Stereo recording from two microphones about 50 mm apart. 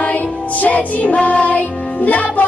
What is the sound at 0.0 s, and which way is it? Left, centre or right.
Music, left.